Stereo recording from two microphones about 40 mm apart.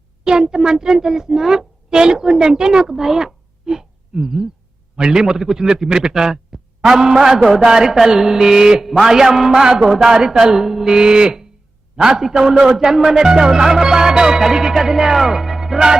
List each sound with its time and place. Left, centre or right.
0.3 s speech: centre
4.9 s music: centre
11.9 s a man's voice: centre
12.2 s music: centre